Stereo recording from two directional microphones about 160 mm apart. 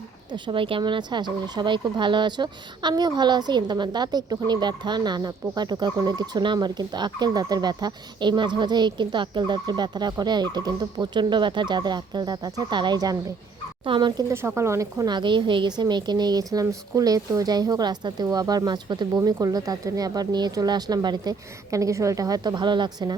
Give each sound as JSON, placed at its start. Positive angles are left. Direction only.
{"t": 0.3, "sound": "speech", "side_deg": -30}
{"t": 14.4, "sound": "speech", "side_deg": -15}